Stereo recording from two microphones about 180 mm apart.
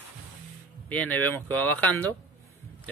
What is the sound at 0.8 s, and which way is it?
Speech, 10° left (ahead or behind).